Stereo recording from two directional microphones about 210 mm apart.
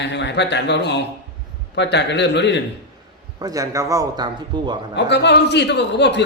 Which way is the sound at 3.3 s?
15° right (ahead or behind).